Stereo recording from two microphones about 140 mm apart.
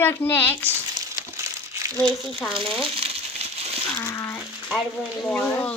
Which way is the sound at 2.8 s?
45° right (ahead or behind).